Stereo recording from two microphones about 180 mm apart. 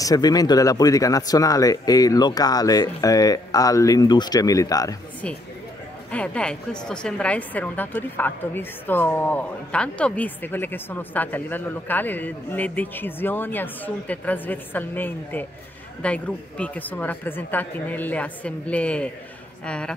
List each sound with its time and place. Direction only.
0.0 s speech: 20° left (ahead or behind)
6.1 s a woman's voice: 5° left (ahead or behind)